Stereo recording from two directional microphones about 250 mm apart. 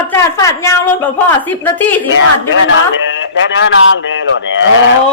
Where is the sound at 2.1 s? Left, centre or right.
Left.